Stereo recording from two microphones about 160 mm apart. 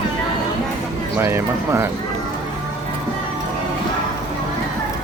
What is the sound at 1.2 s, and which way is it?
Speech, 15° right (ahead or behind).